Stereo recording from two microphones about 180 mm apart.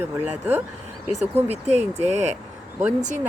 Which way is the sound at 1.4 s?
40° right (ahead or behind).